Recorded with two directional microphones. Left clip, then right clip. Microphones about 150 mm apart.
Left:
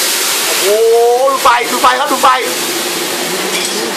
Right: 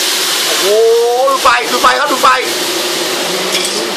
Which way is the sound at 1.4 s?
5° left (ahead or behind).